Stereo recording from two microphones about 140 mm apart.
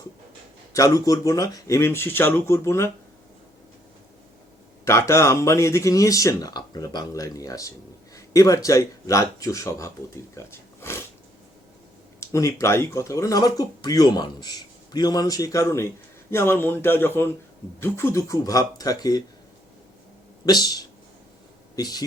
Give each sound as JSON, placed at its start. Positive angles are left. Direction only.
{"t": 0.7, "sound": "speech", "side_deg": 25}
{"t": 4.9, "sound": "speech", "side_deg": 20}
{"t": 12.2, "sound": "speech", "side_deg": 20}
{"t": 20.4, "sound": "speech", "side_deg": 30}